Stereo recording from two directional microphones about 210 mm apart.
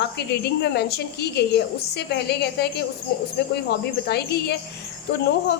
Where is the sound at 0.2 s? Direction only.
50° left (ahead or behind).